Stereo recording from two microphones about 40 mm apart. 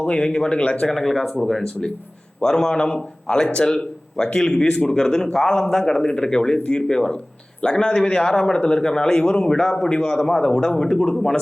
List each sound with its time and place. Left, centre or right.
0.2 s speech: left
0.9 s a man's voice: centre